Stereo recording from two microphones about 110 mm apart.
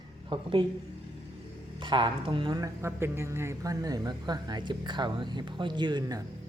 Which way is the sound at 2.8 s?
25° right (ahead or behind).